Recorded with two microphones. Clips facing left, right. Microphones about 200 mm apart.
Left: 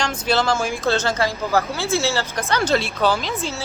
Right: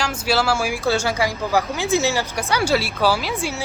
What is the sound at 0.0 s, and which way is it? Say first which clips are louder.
Speech: even; 10° right (ahead or behind).